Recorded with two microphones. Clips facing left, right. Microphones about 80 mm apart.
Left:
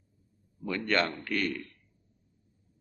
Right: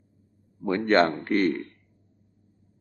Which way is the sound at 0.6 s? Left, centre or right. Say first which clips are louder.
Right 8 dB; right.